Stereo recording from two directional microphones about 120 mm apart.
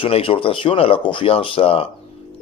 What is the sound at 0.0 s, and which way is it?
A man's voice, 50° left (ahead or behind).